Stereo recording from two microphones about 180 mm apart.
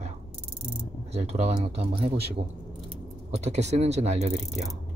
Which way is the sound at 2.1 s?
65° right (ahead or behind).